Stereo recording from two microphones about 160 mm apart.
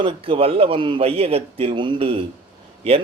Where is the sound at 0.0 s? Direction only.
35° right (ahead or behind).